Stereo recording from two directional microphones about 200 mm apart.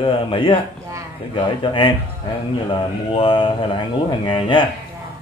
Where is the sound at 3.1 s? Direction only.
25° left (ahead or behind).